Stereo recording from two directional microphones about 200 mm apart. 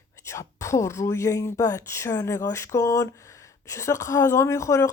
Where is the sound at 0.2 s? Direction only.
15° left (ahead or behind).